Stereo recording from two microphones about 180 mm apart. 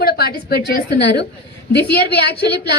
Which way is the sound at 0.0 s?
60° left (ahead or behind).